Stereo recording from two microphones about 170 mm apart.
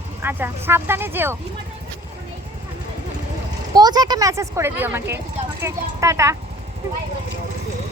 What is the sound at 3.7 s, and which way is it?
Speech, 25° right (ahead or behind).